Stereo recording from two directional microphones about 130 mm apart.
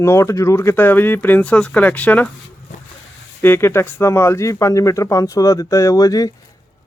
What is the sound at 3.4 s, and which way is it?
Speech, 15° left (ahead or behind).